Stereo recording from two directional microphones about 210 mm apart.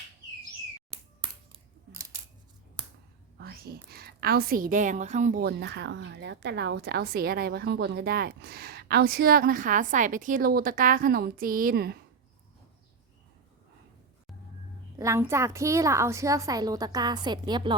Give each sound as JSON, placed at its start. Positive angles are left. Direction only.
{"t": 3.3, "sound": "a woman's voice", "side_deg": -50}
{"t": 14.9, "sound": "a woman's voice", "side_deg": -15}